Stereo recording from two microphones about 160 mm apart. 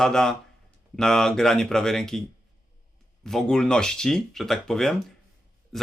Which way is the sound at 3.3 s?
5° left (ahead or behind).